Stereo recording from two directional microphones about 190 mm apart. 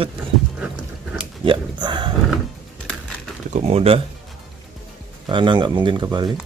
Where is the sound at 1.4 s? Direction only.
25° right (ahead or behind).